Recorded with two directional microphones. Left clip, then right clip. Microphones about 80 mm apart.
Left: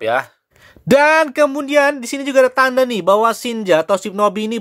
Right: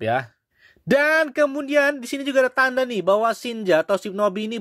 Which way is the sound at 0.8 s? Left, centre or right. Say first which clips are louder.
Left 7 dB; right.